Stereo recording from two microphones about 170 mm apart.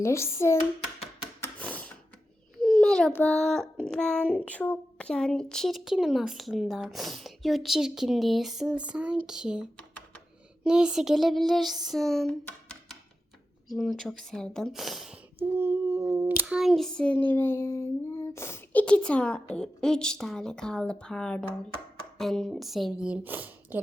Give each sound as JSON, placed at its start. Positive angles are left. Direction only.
{"t": 0.0, "sound": "a child's voice", "side_deg": 15}
{"t": 1.4, "sound": "a sound", "side_deg": 10}
{"t": 2.6, "sound": "a child's voice", "side_deg": 0}
{"t": 10.6, "sound": "a sound", "side_deg": -5}
{"t": 13.7, "sound": "a child's voice", "side_deg": 0}
{"t": 15.4, "sound": "a child's voice", "side_deg": -15}